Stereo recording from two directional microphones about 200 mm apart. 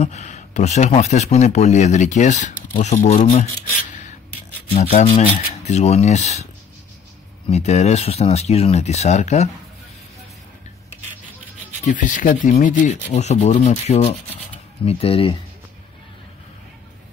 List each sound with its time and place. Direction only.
0.0 s speech: 35° left (ahead or behind)
4.7 s speech: 35° left (ahead or behind)
7.4 s speech: 30° left (ahead or behind)
11.8 s speech: 40° left (ahead or behind)